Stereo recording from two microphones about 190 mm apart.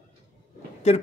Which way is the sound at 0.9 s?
35° left (ahead or behind).